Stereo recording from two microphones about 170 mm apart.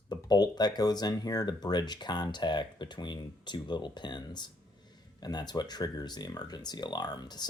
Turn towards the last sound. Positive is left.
turn(degrees=25)  # may be behind; listen again after turning